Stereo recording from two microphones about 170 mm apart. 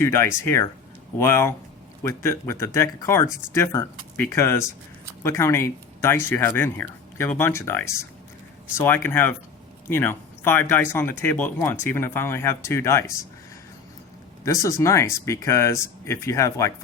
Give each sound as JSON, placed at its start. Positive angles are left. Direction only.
{"t": 0.0, "sound": "speech", "side_deg": 15}
{"t": 14.4, "sound": "speech", "side_deg": 20}